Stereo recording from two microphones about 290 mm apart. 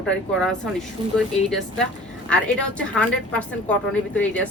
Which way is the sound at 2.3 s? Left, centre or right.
Centre.